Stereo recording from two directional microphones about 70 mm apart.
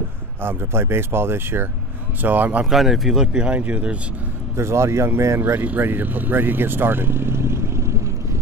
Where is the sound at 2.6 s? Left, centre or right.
Centre.